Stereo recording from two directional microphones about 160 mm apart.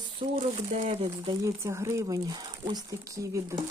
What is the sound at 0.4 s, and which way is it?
Speech, 40° right (ahead or behind).